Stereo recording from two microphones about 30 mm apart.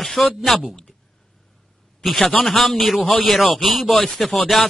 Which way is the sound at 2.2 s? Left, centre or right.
Left.